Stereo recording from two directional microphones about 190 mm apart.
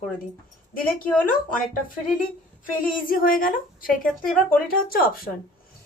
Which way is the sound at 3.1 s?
50° left (ahead or behind).